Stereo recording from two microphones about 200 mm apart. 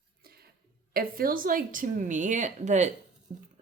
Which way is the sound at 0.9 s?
45° right (ahead or behind).